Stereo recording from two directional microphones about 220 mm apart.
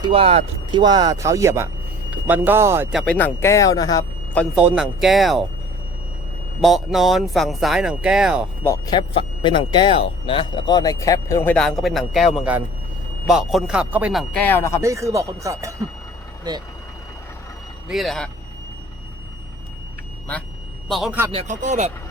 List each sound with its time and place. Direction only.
0.0 s speech: 25° right (ahead or behind); by 3.0 s 10° right (ahead or behind)
3.1 s speech: 10° left (ahead or behind)
4.5 s speech: 5° right (ahead or behind)
6.6 s speech: centre (ahead or behind)
8.6 s speech: 15° left (ahead or behind)
14.8 s speech: 15° right (ahead or behind)
17.8 s speech: centre (ahead or behind)
20.8 s a man's voice: centre (ahead or behind)
21.3 s speech: 35° right (ahead or behind)